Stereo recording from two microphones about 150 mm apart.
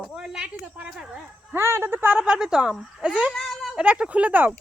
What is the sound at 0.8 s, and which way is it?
Speech, 5° right (ahead or behind).